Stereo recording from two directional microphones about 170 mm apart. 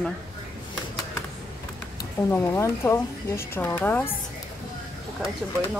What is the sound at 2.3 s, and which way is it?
A woman's voice, 15° left (ahead or behind).